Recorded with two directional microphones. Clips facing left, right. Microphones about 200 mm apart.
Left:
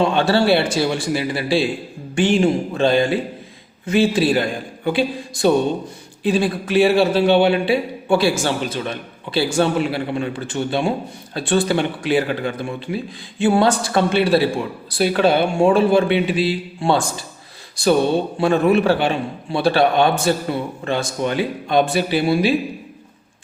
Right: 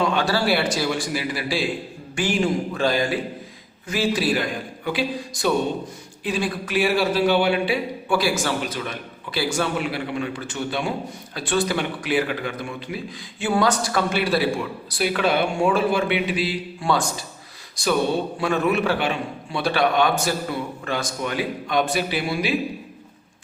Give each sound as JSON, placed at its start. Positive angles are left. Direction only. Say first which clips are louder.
{"t": 0.0, "sound": "speech", "louder": "left 5 dB", "side_deg": 30}
{"t": 18.3, "sound": "speech", "louder": "left 8 dB", "side_deg": 30}